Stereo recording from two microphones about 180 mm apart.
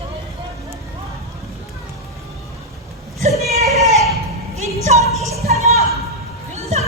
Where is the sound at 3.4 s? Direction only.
35° right (ahead or behind).